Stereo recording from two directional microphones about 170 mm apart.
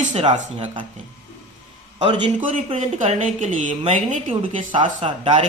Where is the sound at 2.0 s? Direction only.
30° right (ahead or behind).